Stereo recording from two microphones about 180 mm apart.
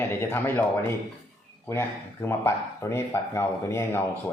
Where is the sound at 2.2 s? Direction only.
15° left (ahead or behind).